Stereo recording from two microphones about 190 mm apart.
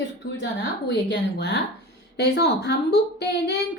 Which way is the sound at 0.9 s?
65° left (ahead or behind).